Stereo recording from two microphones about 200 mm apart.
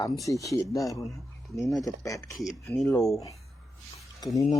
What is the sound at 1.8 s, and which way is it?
Speech, 15° left (ahead or behind).